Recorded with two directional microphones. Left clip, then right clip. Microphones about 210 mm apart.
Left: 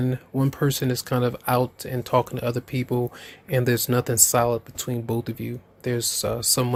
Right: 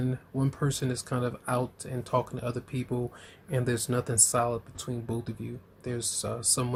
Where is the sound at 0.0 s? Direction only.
35° left (ahead or behind).